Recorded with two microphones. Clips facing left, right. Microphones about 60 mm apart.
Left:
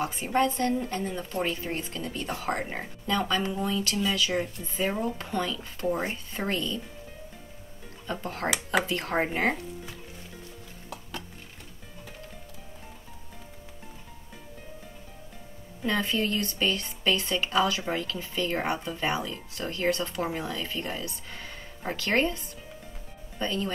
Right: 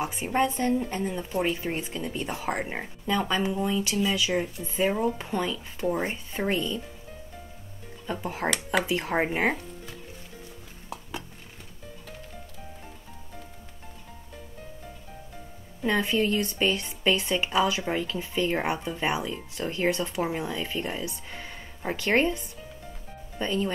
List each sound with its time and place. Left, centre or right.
0.0 s speech: centre
8.1 s speech: centre
15.8 s speech: centre